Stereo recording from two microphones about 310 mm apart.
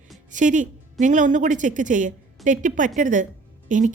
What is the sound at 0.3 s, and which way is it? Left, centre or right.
A woman's voice, right.